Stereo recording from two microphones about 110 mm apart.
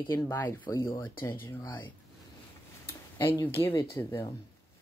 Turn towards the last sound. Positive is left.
turn(degrees=20)  # may be behind; listen again after turning